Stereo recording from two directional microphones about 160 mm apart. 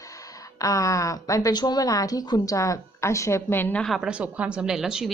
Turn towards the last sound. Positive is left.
turn(degrees=-5)  # may be behind; listen again after turning